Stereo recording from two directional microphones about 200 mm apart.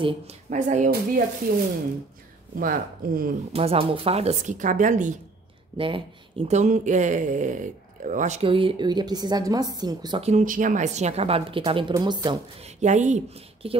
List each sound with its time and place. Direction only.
0.0 s a woman's voice: 35° right (ahead or behind)
2.6 s speech: 45° right (ahead or behind)
3.5 s a woman's voice: 30° right (ahead or behind)
5.8 s speech: 25° right (ahead or behind)
10.2 s a woman's voice: 40° right (ahead or behind); by 12.7 s 20° right (ahead or behind)
12.8 s a woman's voice: 35° right (ahead or behind)